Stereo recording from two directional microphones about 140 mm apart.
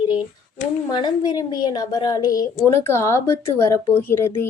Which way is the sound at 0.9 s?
30° left (ahead or behind).